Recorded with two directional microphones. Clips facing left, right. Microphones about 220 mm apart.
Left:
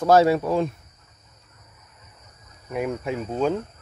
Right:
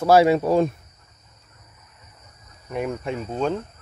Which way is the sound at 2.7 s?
5° left (ahead or behind).